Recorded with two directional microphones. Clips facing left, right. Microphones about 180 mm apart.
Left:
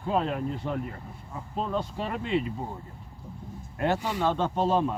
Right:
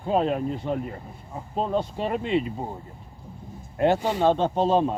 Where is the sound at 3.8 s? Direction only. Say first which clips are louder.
Right 6 dB; 25° right (ahead or behind).